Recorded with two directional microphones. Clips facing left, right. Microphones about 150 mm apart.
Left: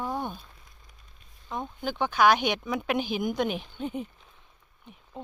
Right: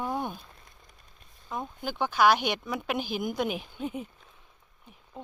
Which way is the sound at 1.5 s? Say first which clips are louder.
Left 2 dB; 5° right (ahead or behind).